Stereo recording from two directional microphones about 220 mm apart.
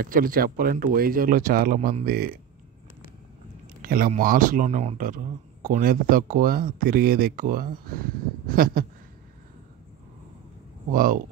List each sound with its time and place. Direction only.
0.0 s speech: 40° right (ahead or behind)
3.8 s speech: 40° right (ahead or behind)
10.9 s speech: 40° right (ahead or behind)